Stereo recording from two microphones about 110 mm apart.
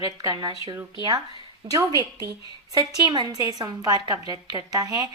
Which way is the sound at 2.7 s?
40° right (ahead or behind).